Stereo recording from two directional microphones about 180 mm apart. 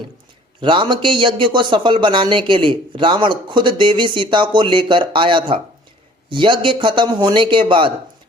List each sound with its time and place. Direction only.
0.6 s speech: 25° right (ahead or behind)